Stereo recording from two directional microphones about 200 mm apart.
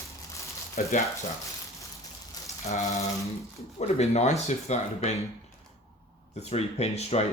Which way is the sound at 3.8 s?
35° left (ahead or behind).